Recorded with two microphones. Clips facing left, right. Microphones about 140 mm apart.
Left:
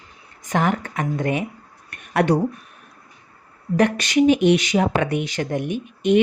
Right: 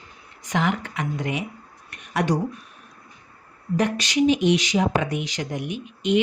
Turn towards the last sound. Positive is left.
turn(degrees=50)  # may be behind; listen again after turning